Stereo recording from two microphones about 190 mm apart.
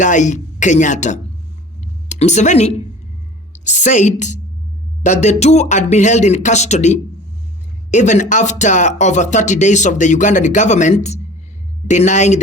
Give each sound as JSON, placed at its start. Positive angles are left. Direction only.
{"t": 0.0, "sound": "speech", "side_deg": 40}
{"t": 1.8, "sound": "a sound", "side_deg": 35}
{"t": 3.5, "sound": "a woman's voice", "side_deg": 40}